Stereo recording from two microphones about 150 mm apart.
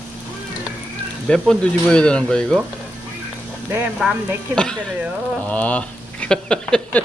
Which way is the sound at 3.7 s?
10° right (ahead or behind).